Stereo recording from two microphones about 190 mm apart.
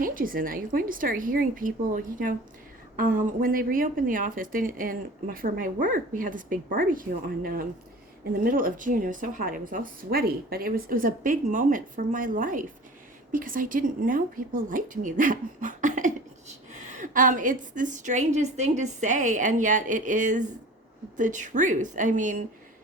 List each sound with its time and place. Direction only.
0.0 s a woman's voice: 45° right (ahead or behind)